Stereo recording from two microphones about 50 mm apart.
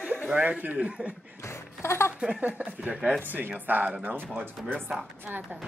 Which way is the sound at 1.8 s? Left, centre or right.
Left.